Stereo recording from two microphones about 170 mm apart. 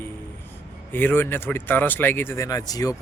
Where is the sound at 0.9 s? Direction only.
10° left (ahead or behind).